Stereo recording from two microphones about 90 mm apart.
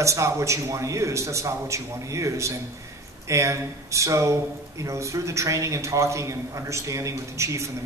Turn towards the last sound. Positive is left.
turn(degrees=-35)  # may be behind; listen again after turning